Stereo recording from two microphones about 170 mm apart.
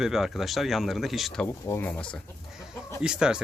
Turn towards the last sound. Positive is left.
turn(degrees=-5)  # may be behind; listen again after turning